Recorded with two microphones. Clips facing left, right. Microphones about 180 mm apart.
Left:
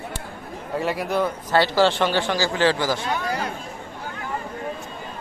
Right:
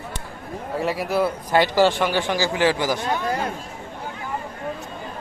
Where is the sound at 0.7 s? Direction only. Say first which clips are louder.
Right 1 dB; centre (ahead or behind); by 3.0 s 15° right (ahead or behind).